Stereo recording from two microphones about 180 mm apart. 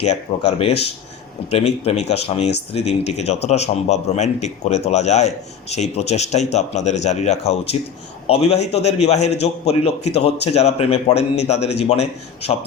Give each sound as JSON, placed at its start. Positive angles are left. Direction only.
{"t": 0.0, "sound": "a man's voice", "side_deg": 35}